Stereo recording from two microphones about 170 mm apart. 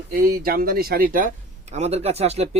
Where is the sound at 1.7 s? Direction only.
40° right (ahead or behind).